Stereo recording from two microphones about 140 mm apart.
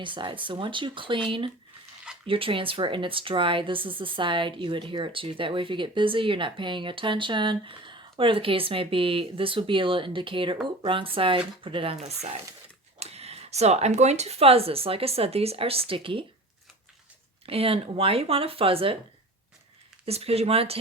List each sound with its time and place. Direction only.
0.0 s speech: 35° right (ahead or behind)
17.4 s speech: 45° right (ahead or behind)
20.1 s speech: 45° right (ahead or behind)